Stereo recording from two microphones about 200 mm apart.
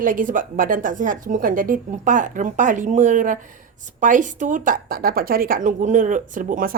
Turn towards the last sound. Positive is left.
turn(degrees=-45)  # may be behind; listen again after turning